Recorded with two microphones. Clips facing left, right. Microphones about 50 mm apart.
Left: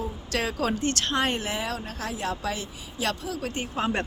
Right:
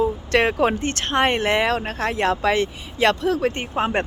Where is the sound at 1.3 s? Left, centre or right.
Right.